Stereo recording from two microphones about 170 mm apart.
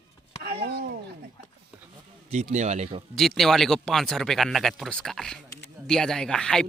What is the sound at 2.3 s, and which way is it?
Speech, 45° right (ahead or behind).